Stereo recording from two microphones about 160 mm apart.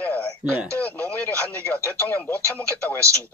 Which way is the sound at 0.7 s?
10° left (ahead or behind).